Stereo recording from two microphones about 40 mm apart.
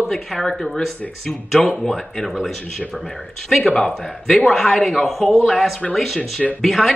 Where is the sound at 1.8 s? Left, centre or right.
Centre.